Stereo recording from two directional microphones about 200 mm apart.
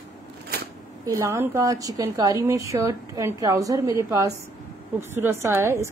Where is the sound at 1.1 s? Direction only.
15° right (ahead or behind).